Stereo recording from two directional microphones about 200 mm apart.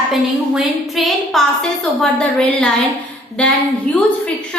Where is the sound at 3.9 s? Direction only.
5° left (ahead or behind).